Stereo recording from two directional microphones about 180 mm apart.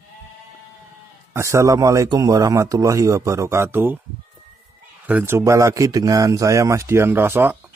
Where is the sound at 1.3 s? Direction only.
15° right (ahead or behind).